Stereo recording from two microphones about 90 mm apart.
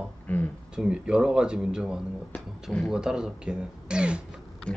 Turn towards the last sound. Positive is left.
turn(degrees=-10)  # may be behind; listen again after turning